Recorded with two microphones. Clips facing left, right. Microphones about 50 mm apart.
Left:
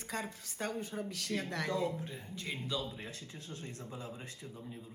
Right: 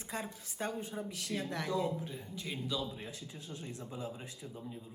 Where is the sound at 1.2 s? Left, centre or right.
Left.